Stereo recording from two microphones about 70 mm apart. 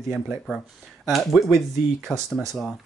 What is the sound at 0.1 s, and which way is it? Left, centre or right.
Speech, centre.